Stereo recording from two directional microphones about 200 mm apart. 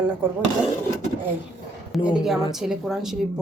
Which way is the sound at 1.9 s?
5° right (ahead or behind).